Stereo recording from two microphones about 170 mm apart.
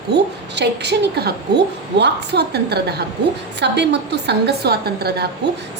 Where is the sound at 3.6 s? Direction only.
85° right; by 5.2 s 70° right (ahead or behind).